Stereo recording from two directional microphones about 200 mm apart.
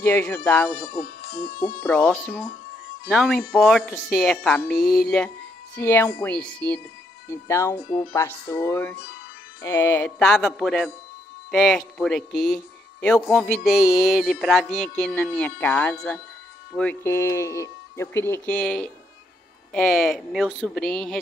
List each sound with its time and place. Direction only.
0.0 s speech: 10° left (ahead or behind)
1.0 s music: 50° left (ahead or behind)
1.8 s speech: 10° left (ahead or behind)
3.1 s music: centre (ahead or behind)
5.8 s speech: 10° left (ahead or behind)
7.7 s speech: 25° left (ahead or behind)
9.6 s music: 10° left (ahead or behind)
16.7 s speech: 10° left (ahead or behind)
19.7 s music: centre (ahead or behind)